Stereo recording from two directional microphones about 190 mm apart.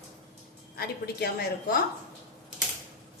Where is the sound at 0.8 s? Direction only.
55° left (ahead or behind).